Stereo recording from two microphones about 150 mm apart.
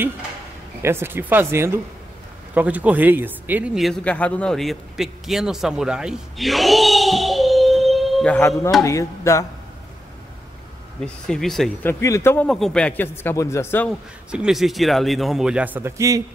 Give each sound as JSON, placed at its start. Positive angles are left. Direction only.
{"t": 0.8, "sound": "speech", "side_deg": -15}
{"t": 8.4, "sound": "speech", "side_deg": 20}
{"t": 11.0, "sound": "a man's voice", "side_deg": 5}
{"t": 11.8, "sound": "speech", "side_deg": 15}
{"t": 12.4, "sound": "speech", "side_deg": 5}
{"t": 13.8, "sound": "a man's voice", "side_deg": -5}